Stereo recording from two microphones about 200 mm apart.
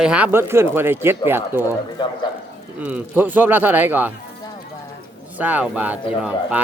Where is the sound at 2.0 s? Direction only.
20° left (ahead or behind).